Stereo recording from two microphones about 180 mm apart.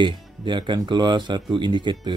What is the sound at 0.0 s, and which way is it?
Speech, 25° right (ahead or behind).